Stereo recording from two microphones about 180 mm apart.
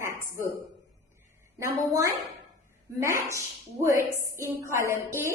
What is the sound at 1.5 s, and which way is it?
A woman's voice, 15° right (ahead or behind).